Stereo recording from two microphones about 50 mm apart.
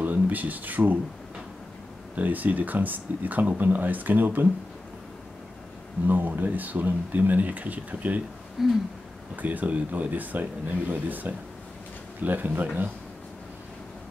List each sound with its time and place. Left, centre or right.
0.0 s speech: right
2.1 s speech: right
6.0 s speech: right
8.6 s a sound: centre
9.4 s speech: right